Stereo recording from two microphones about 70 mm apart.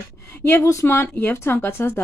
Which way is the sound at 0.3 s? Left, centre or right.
Left.